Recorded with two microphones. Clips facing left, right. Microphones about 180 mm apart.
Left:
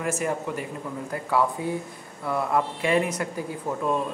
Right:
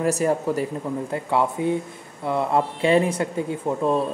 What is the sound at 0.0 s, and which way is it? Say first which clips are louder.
Speech: right 6 dB; 35° right (ahead or behind).